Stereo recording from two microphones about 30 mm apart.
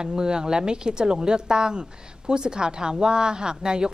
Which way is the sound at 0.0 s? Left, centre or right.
Right.